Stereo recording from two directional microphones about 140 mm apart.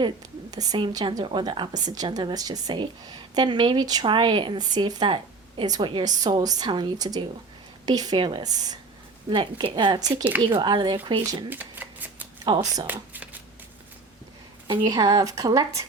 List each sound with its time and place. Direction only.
0.5 s a woman's voice: 30° right (ahead or behind)
11.4 s shuffling cards: 15° right (ahead or behind)
12.5 s a woman's voice: 35° right (ahead or behind)
14.7 s speech: 30° right (ahead or behind)